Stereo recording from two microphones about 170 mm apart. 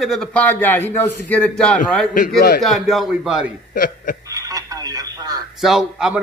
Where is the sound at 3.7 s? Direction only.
55° left (ahead or behind).